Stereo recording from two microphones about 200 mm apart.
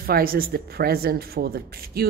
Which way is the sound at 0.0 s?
50° right (ahead or behind).